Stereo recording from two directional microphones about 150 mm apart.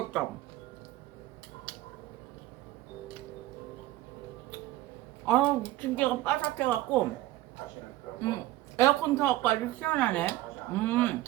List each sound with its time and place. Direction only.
5.2 s speech: 10° left (ahead or behind)
8.2 s speech: 20° left (ahead or behind)